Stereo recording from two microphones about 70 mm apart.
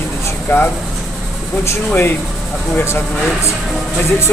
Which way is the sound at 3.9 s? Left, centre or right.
Left.